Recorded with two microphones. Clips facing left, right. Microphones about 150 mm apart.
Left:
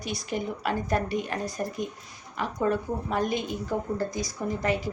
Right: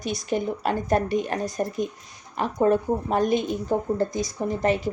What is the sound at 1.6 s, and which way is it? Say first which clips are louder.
Speech: right 5 dB; 35° right (ahead or behind).